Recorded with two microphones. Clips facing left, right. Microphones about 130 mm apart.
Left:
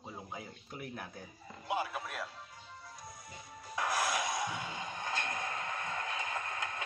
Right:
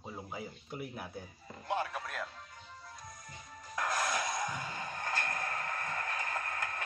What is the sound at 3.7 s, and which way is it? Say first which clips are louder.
Music: even; 10° left (ahead or behind).